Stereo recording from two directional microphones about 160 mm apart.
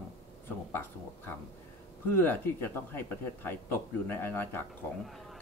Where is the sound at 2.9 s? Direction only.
15° left (ahead or behind).